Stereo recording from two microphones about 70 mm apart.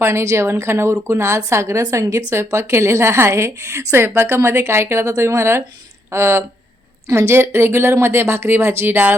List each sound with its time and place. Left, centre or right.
0.0 s a woman's voice: right